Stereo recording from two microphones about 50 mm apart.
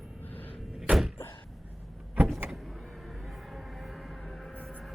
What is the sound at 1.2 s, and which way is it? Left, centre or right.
Door, left.